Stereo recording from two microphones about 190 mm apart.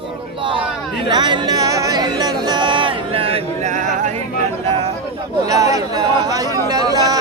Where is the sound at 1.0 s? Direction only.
25° right (ahead or behind); by 4.1 s 40° right (ahead or behind).